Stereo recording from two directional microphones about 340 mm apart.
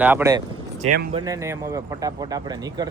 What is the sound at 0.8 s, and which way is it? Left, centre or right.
Speech, right.